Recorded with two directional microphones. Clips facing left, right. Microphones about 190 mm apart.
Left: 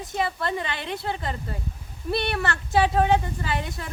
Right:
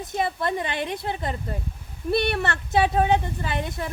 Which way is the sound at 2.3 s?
20° right (ahead or behind).